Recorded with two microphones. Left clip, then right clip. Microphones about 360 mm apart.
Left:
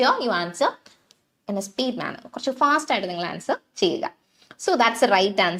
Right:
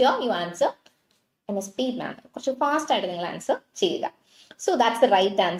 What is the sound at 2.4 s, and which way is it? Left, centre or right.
A woman's voice, left.